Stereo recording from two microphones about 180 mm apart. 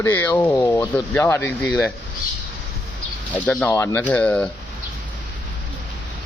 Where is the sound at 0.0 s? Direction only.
10° left (ahead or behind).